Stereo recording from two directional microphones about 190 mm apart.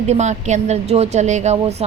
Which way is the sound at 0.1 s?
35° right (ahead or behind).